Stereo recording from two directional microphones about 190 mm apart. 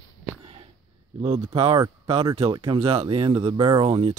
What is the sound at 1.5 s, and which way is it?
Speech, 30° right (ahead or behind).